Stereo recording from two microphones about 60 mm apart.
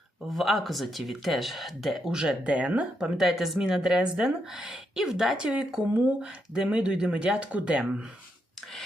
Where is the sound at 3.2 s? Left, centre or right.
Centre.